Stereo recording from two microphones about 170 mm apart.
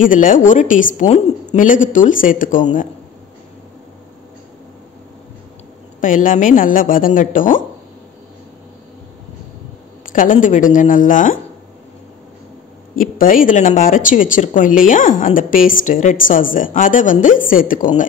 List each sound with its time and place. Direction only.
0.0 s a woman's voice: 50° left (ahead or behind)
5.9 s a woman's voice: 50° left (ahead or behind)
10.0 s a woman's voice: 50° left (ahead or behind)
12.9 s a woman's voice: 55° left (ahead or behind)